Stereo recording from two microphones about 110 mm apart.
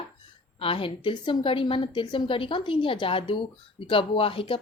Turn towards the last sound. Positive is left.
turn(degrees=55)  # may be behind; listen again after turning